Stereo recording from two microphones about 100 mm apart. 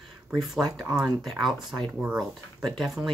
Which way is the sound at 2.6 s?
Centre (ahead or behind).